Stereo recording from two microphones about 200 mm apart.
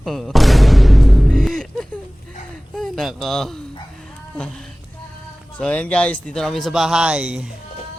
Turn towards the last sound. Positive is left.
turn(degrees=-5)  # may be behind; listen again after turning